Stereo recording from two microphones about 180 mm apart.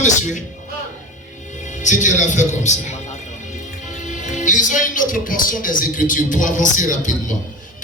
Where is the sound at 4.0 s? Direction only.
40° left (ahead or behind).